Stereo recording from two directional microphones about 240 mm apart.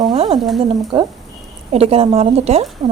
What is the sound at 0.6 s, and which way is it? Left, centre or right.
Speech, right.